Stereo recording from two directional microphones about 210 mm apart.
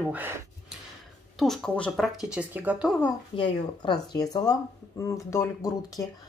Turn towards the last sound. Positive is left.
turn(degrees=15)  # may be behind; listen again after turning